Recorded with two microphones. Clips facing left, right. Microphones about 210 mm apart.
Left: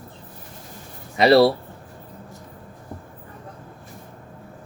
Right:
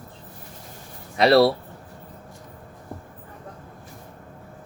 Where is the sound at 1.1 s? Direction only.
Centre (ahead or behind).